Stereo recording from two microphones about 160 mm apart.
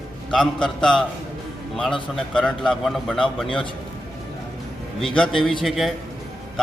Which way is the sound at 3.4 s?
30° left (ahead or behind).